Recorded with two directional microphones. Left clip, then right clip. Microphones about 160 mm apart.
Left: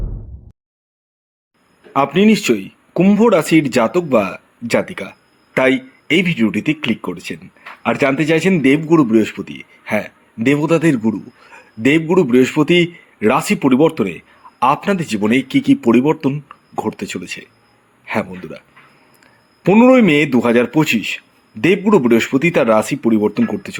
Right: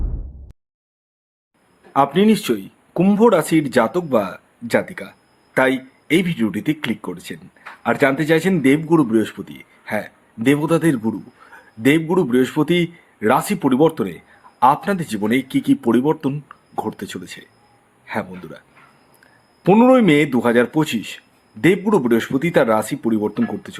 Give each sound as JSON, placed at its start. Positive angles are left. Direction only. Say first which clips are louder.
{"t": 1.9, "sound": "a man's voice", "louder": "left 2 dB", "side_deg": 10}
{"t": 19.6, "sound": "a man's voice", "louder": "left 2 dB", "side_deg": 5}